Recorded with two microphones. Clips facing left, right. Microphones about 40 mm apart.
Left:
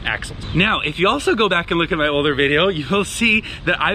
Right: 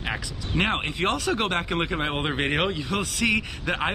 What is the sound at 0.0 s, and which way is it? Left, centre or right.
Speech, left.